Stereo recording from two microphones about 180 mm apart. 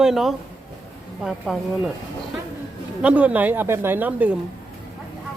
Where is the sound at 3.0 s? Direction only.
10° right (ahead or behind).